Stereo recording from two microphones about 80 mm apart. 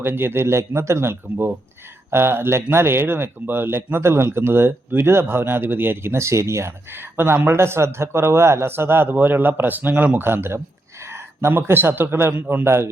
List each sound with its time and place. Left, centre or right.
0.0 s a man's voice: right